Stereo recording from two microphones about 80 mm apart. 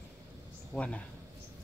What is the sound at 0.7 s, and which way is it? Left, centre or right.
Speech, centre.